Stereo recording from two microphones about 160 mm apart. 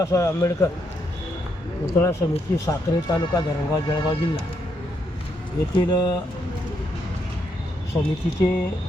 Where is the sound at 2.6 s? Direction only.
20° left (ahead or behind).